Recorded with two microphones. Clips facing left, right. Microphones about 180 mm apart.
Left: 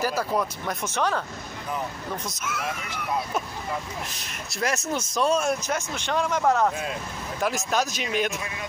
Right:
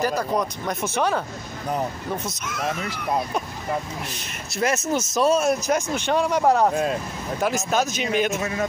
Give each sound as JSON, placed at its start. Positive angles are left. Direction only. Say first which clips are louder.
{"t": 0.0, "sound": "speech", "louder": "right 3 dB", "side_deg": 5}
{"t": 0.8, "sound": "speech", "louder": "right 3 dB", "side_deg": -10}
{"t": 2.2, "sound": "speech", "louder": "right 1 dB", "side_deg": 5}
{"t": 4.5, "sound": "speech", "louder": "right 4 dB", "side_deg": 0}
{"t": 5.7, "sound": "speech", "louder": "right 6 dB", "side_deg": -15}
{"t": 6.7, "sound": "speech", "louder": "right 8 dB", "side_deg": -40}
{"t": 7.4, "sound": "speech", "louder": "right 3 dB", "side_deg": 0}
{"t": 8.4, "sound": "speech", "louder": "right 10 dB", "side_deg": -45}